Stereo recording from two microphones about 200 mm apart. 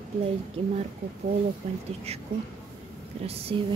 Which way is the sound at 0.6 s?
25° right (ahead or behind).